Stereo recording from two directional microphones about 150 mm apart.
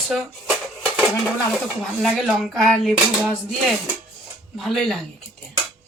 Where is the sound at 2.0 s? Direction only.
Centre (ahead or behind).